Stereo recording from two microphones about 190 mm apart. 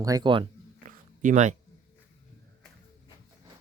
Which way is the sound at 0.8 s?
40° right (ahead or behind).